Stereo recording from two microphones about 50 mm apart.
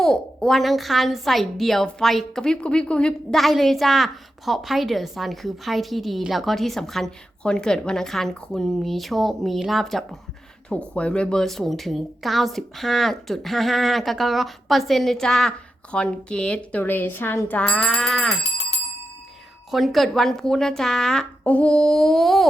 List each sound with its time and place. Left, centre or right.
0.0 s speech: centre
3.3 s speech: centre
10.7 s speech: left
11.4 s speech: centre
16.8 s speech: left
17.7 s speech: centre
19.7 s speech: centre
21.4 s speech: left
21.8 s speech: centre